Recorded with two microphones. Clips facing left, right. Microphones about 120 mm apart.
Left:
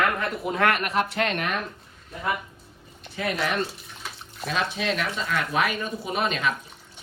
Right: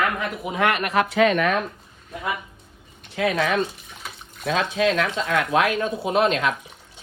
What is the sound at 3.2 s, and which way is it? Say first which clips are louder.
Speech: right 6 dB; 90° right.